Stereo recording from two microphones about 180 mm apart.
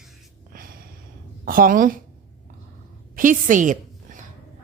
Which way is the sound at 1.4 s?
50° right (ahead or behind).